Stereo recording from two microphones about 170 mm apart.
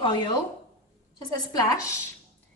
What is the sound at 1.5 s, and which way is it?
Speech, 20° left (ahead or behind).